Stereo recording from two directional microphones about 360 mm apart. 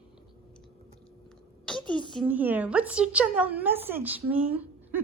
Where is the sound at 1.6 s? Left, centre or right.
Centre.